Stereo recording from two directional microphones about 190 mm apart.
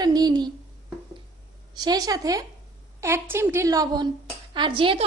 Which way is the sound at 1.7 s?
20° right (ahead or behind).